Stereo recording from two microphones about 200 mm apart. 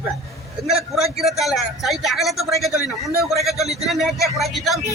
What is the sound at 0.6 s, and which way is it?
Speech, centre (ahead or behind).